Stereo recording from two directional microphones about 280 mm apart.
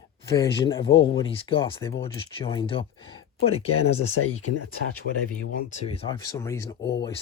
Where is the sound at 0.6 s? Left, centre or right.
Centre.